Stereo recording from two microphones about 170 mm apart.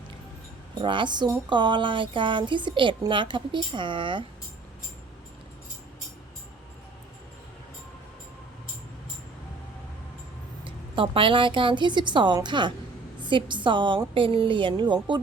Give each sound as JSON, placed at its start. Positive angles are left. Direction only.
{"t": 0.8, "sound": "speech", "side_deg": -30}
{"t": 10.6, "sound": "speech", "side_deg": -30}